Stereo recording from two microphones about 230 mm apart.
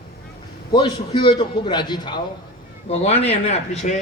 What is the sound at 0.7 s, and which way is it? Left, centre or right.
A man's voice, left.